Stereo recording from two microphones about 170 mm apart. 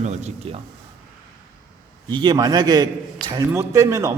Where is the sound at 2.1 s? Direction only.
25° right (ahead or behind).